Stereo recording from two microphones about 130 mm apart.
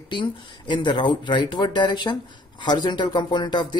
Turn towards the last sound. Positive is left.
turn(degrees=35)  # may be behind; listen again after turning